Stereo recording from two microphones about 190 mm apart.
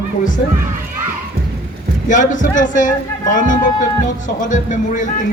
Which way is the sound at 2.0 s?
40° left (ahead or behind).